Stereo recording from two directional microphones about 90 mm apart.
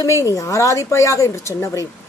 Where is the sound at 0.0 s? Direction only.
35° left (ahead or behind).